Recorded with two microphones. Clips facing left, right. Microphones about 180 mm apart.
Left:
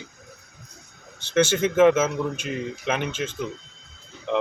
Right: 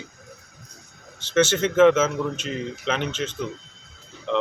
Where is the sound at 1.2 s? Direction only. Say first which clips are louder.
Even; 15° left (ahead or behind).